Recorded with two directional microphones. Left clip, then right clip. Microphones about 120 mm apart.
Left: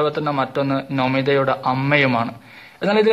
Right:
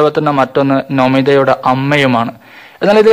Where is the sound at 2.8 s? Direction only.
45° right (ahead or behind).